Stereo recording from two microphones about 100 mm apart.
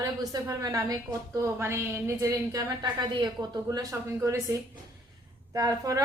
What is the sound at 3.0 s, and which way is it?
A woman's voice, 45° right (ahead or behind).